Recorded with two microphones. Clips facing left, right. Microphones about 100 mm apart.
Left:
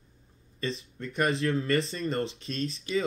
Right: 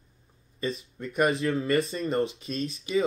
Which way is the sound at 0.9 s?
15° right (ahead or behind).